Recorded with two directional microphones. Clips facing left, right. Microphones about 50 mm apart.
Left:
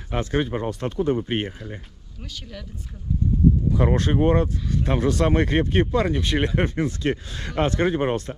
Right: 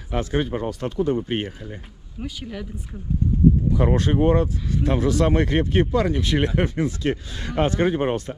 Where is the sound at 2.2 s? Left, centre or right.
Centre.